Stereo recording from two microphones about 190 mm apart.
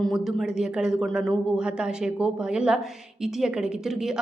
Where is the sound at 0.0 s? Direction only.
Centre (ahead or behind).